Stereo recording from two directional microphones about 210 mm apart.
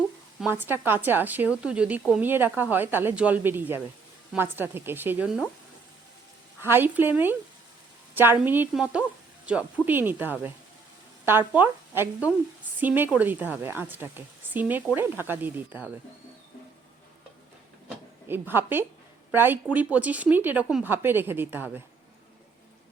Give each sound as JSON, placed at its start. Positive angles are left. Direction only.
{"t": 0.3, "sound": "speech", "side_deg": -5}
{"t": 6.6, "sound": "speech", "side_deg": -10}
{"t": 18.3, "sound": "speech", "side_deg": -10}